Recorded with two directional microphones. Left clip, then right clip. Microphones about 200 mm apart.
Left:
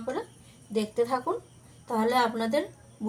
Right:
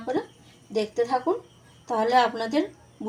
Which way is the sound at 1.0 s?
15° right (ahead or behind).